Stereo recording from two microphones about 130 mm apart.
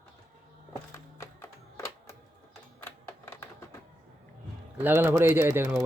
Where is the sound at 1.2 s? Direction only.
20° left (ahead or behind).